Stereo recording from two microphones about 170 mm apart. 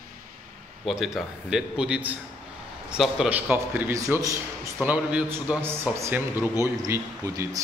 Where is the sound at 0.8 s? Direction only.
Centre (ahead or behind).